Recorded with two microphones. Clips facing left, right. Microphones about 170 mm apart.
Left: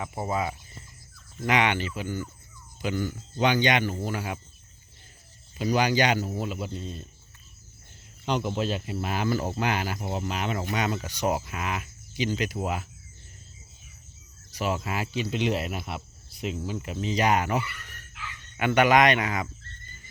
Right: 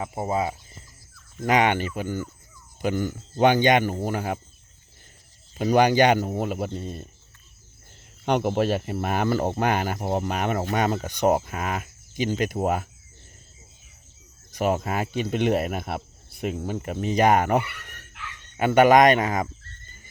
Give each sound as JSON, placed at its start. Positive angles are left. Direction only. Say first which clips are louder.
{"t": 0.0, "sound": "speech", "louder": "right 3 dB", "side_deg": -25}
{"t": 1.4, "sound": "speech", "louder": "right 4 dB", "side_deg": -45}
{"t": 5.7, "sound": "speech", "louder": "right 6 dB", "side_deg": -55}
{"t": 8.2, "sound": "speech", "louder": "right 5 dB", "side_deg": -60}
{"t": 14.5, "sound": "speech", "louder": "right 5 dB", "side_deg": -50}
{"t": 18.5, "sound": "speech", "louder": "right 5 dB", "side_deg": -40}